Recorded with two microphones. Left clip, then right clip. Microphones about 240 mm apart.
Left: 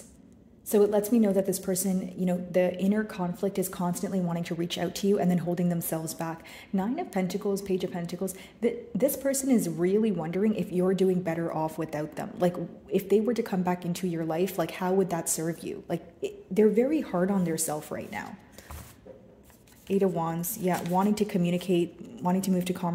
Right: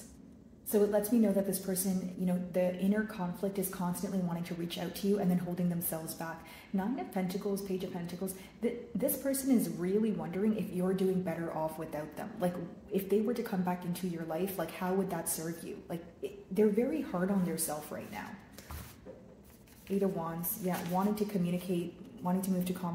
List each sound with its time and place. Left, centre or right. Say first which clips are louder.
0.7 s speech: left 6 dB; left
20.0 s speech: left 7 dB; left